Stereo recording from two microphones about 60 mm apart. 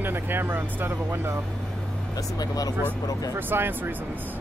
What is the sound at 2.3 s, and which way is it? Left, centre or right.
Speech, left.